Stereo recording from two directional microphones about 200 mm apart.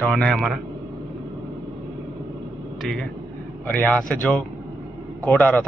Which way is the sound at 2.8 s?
5° left (ahead or behind).